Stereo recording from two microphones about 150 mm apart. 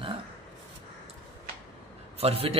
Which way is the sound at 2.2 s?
40° right (ahead or behind).